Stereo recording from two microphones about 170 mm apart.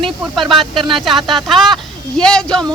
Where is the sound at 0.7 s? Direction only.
30° right (ahead or behind).